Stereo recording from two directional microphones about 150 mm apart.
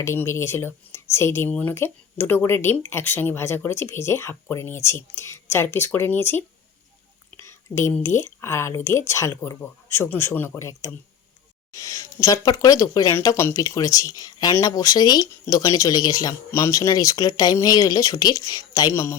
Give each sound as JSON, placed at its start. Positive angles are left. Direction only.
{"t": 0.0, "sound": "speech", "side_deg": 15}